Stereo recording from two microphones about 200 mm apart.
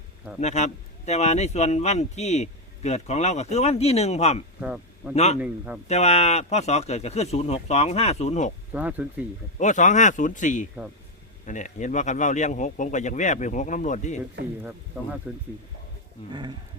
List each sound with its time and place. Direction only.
0.3 s speech: 35° left (ahead or behind)
4.6 s speech: 5° right (ahead or behind)
5.1 s speech: 30° left (ahead or behind)
5.4 s a man's voice: 5° right (ahead or behind)
5.9 s speech: 30° left (ahead or behind)
8.7 s speech: 5° right (ahead or behind)
9.6 s speech: 35° left (ahead or behind)
14.6 s speech: 10° right (ahead or behind)